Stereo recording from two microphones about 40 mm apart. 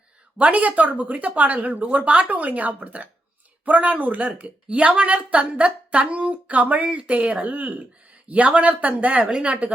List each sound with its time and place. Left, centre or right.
0.3 s a woman's voice: right